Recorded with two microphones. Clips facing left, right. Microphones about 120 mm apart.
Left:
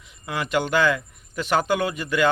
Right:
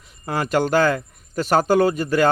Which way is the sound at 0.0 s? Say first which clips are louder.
Right 4 dB; 40° right (ahead or behind).